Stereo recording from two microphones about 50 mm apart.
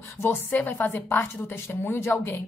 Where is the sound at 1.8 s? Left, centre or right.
Left.